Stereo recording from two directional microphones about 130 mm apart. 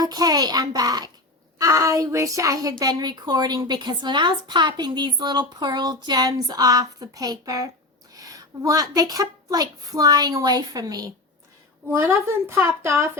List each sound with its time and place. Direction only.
0.0 s a woman's voice: 30° right (ahead or behind)